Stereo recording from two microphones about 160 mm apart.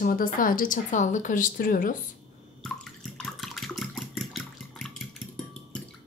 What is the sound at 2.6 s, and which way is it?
Water, 5° left (ahead or behind).